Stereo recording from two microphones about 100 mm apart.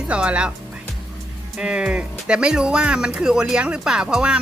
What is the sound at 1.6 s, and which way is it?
Speech, 10° right (ahead or behind).